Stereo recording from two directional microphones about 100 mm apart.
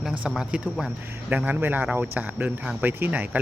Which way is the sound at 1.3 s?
15° right (ahead or behind).